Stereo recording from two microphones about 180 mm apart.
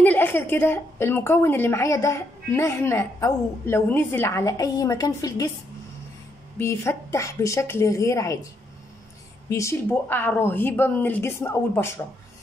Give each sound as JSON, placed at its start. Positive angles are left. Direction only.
{"t": 0.0, "sound": "a woman's voice", "side_deg": 10}
{"t": 6.6, "sound": "a woman's voice", "side_deg": 15}
{"t": 9.5, "sound": "a woman's voice", "side_deg": 15}